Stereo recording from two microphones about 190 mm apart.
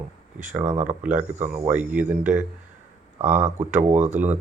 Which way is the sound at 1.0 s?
5° right (ahead or behind).